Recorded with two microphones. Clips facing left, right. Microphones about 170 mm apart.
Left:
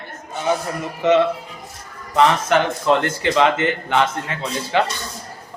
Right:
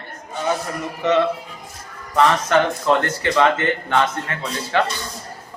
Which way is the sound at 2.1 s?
20° left (ahead or behind).